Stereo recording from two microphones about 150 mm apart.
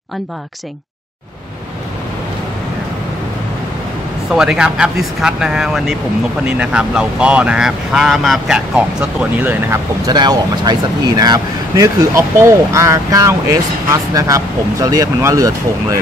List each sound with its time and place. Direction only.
4.3 s speech: 5° right (ahead or behind)
10.0 s speech: 25° right (ahead or behind)